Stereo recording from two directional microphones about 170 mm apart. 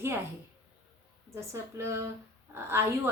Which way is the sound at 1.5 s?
15° right (ahead or behind).